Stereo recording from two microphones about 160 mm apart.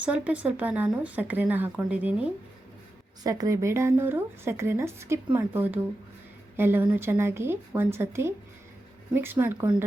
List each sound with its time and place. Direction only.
0.0 s speech: 10° right (ahead or behind)
3.2 s speech: 20° right (ahead or behind)